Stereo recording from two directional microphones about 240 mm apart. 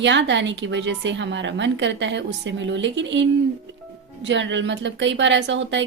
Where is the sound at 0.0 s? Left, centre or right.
Right.